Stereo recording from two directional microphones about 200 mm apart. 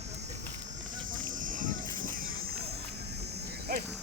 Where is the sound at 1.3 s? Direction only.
40° right (ahead or behind).